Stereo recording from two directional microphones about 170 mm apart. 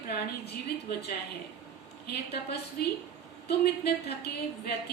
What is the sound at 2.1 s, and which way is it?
A woman's voice, 70° left (ahead or behind).